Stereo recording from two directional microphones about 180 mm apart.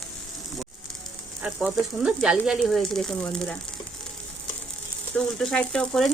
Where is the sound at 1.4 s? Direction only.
5° right (ahead or behind).